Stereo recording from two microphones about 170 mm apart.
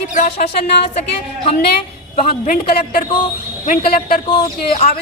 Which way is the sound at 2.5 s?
55° left (ahead or behind).